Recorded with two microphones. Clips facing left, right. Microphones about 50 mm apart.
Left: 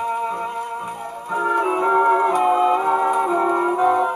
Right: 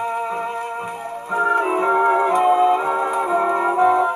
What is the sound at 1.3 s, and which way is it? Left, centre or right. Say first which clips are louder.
Music: right 1 dB; right.